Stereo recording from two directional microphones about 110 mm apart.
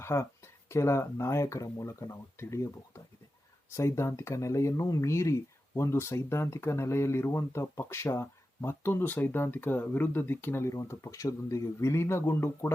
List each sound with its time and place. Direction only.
0.0 s speech: 25° left (ahead or behind)